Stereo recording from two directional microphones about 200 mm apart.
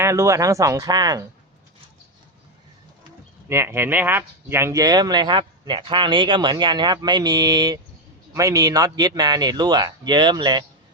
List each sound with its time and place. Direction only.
0.0 s speech: 15° right (ahead or behind)
3.5 s speech: 10° right (ahead or behind)